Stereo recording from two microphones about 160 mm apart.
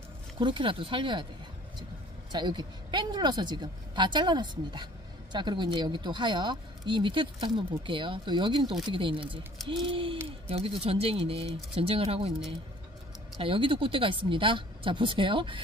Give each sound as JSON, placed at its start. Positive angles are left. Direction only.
{"t": 0.4, "sound": "speech", "side_deg": -30}
{"t": 2.3, "sound": "a woman's voice", "side_deg": -30}
{"t": 13.4, "sound": "speech", "side_deg": -35}